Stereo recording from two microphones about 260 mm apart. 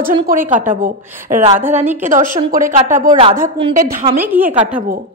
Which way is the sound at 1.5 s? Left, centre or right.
Centre.